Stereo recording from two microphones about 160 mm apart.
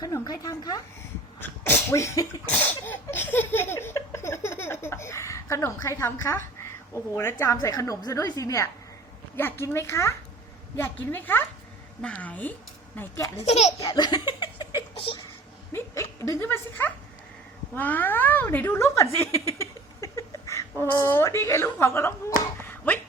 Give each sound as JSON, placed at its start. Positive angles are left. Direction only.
{"t": 0.0, "sound": "a woman's voice", "side_deg": 25}
{"t": 1.4, "sound": "sneeze", "side_deg": 15}
{"t": 2.5, "sound": "laughter", "side_deg": 10}
{"t": 9.3, "sound": "speech", "side_deg": 15}
{"t": 13.4, "sound": "a child's voice", "side_deg": 45}
{"t": 13.7, "sound": "laughter", "side_deg": 25}
{"t": 14.9, "sound": "a sound", "side_deg": 35}
{"t": 15.7, "sound": "speech", "side_deg": 20}
{"t": 22.6, "sound": "a sound", "side_deg": 10}